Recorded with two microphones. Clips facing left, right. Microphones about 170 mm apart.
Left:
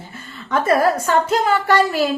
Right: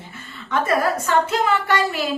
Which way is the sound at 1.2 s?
40° left (ahead or behind).